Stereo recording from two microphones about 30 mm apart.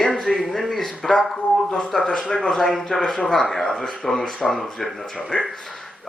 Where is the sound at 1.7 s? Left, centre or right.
Centre.